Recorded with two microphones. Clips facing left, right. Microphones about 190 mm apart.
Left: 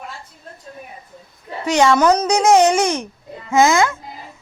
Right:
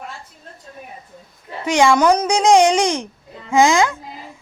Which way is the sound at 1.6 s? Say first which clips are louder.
Even; 10° right (ahead or behind).